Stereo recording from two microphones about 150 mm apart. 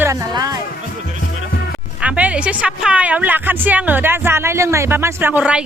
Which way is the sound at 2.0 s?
10° right (ahead or behind).